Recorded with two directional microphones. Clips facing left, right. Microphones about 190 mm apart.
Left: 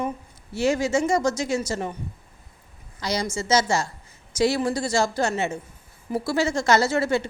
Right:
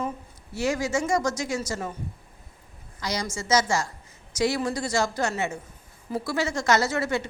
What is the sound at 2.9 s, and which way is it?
Speech, 30° left (ahead or behind).